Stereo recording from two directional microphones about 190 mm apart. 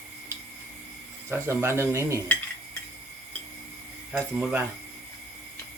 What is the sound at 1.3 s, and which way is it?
Speech, 15° right (ahead or behind).